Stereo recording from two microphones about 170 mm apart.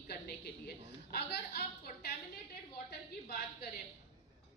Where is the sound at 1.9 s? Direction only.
50° left (ahead or behind).